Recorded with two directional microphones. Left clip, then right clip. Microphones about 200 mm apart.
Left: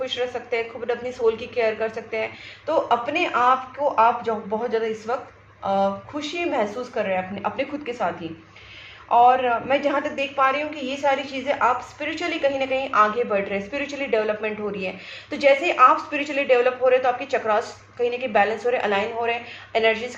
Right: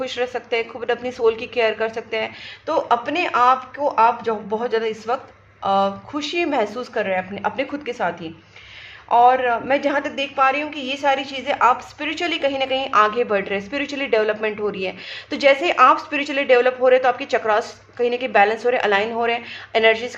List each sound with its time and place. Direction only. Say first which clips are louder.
0.0 s a woman's voice: right 2 dB; 45° right (ahead or behind)